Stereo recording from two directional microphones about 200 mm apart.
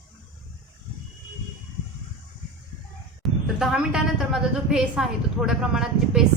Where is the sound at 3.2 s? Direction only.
Centre (ahead or behind).